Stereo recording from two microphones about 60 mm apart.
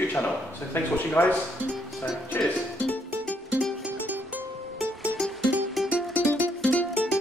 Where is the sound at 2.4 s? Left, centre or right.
Left.